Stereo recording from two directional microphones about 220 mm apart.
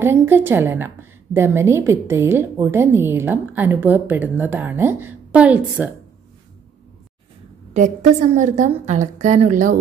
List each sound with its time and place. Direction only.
0.0 s a woman's voice: 10° right (ahead or behind)
7.7 s a woman's voice: 30° right (ahead or behind)